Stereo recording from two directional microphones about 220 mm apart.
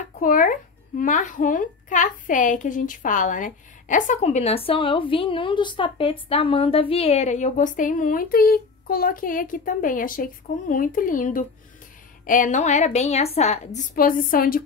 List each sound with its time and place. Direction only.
0.2 s a child's voice: 40° left (ahead or behind)